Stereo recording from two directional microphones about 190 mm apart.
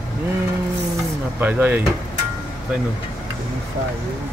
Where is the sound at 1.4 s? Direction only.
10° right (ahead or behind).